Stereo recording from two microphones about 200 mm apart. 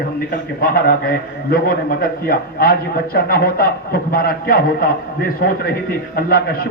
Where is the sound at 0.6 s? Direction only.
50° left (ahead or behind).